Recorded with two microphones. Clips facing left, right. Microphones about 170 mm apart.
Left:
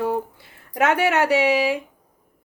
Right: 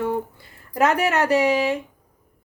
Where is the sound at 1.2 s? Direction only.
5° left (ahead or behind).